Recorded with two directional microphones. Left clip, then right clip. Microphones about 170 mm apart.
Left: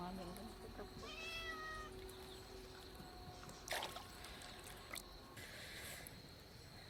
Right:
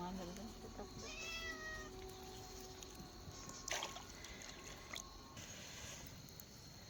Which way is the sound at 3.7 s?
5° right (ahead or behind).